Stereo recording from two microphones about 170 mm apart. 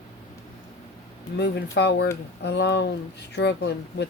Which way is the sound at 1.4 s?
80° left.